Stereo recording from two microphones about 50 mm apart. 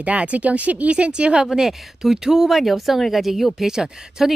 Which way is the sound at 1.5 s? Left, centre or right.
Centre.